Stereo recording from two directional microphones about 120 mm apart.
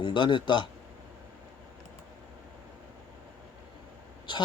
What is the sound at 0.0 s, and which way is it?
Speech, 40° left (ahead or behind).